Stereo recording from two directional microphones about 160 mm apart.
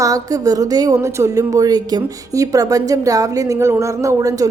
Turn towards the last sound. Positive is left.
turn(degrees=-20)  # may be behind; listen again after turning